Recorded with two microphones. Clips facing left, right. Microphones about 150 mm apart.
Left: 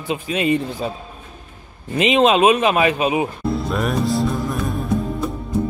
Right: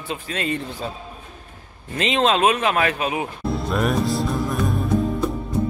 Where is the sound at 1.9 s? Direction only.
15° left (ahead or behind).